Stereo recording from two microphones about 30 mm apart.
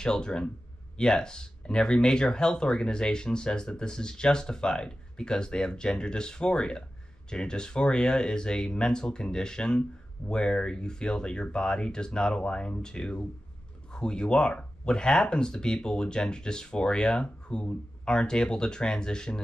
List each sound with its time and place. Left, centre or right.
0.0 s speech: left